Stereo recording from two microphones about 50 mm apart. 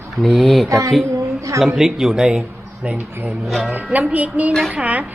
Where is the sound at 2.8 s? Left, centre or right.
Right.